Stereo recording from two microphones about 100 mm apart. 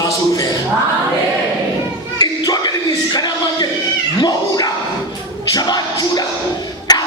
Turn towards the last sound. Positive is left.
turn(degrees=40)  # may be behind; listen again after turning